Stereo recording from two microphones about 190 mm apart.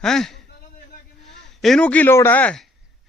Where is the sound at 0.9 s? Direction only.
65° left (ahead or behind).